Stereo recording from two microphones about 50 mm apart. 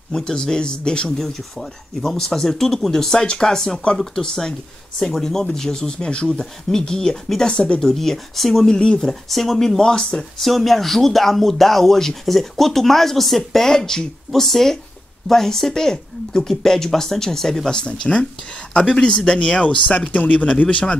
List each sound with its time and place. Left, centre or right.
0.1 s speech: centre
1.1 s speech: centre
7.8 s speech: centre
8.6 s speech: centre
9.0 s speech: centre
10.4 s speech: centre
17.7 s speech: left